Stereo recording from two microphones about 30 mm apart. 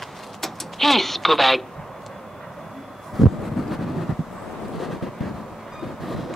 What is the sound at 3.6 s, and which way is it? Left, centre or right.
Vehicle, centre.